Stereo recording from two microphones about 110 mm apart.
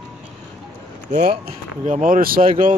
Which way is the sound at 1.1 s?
90° right.